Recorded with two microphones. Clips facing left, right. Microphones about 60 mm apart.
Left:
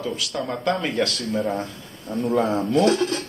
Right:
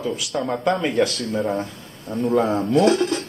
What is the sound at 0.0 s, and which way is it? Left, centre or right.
Speech, centre.